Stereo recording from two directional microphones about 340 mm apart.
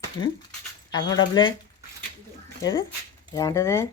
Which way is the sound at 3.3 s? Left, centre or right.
Centre.